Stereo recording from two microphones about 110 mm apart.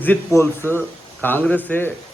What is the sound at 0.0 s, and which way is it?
A man's voice, 20° left (ahead or behind).